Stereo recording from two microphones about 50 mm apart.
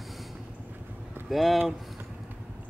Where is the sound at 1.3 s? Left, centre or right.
Centre.